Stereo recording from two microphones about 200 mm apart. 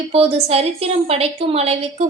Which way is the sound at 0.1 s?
30° right (ahead or behind).